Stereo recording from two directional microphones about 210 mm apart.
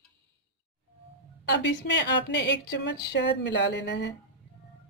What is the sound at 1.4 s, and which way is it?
Speech, 55° left (ahead or behind).